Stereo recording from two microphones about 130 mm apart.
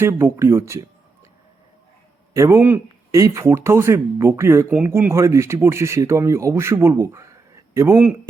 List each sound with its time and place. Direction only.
0.0 s speech: 20° right (ahead or behind)
2.3 s speech: 20° right (ahead or behind)